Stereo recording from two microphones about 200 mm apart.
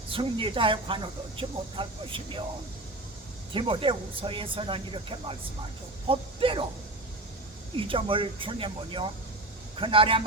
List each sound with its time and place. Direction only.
0.1 s speech: 25° right (ahead or behind)
3.5 s speech: 25° right (ahead or behind)
7.8 s speech: 25° right (ahead or behind)